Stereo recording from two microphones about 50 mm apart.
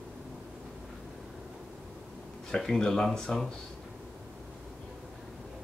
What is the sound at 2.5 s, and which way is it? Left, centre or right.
Speech, centre.